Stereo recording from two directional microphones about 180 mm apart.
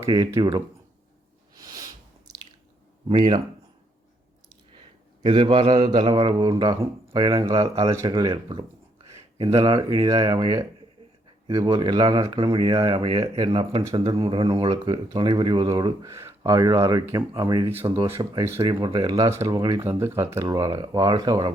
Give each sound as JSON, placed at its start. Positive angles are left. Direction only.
{"t": 0.1, "sound": "speech", "side_deg": -20}
{"t": 1.5, "sound": "a sound", "side_deg": -20}
{"t": 3.1, "sound": "speech", "side_deg": -35}
{"t": 5.2, "sound": "speech", "side_deg": -30}
{"t": 18.6, "sound": "speech", "side_deg": -30}